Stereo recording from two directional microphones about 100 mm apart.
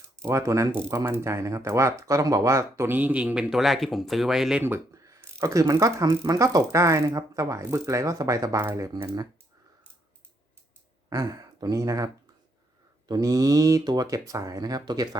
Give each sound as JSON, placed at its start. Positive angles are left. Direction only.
{"t": 0.2, "sound": "speech", "side_deg": -30}
{"t": 4.6, "sound": "a sound", "side_deg": -20}
{"t": 5.4, "sound": "speech", "side_deg": -35}
{"t": 11.1, "sound": "speech", "side_deg": -35}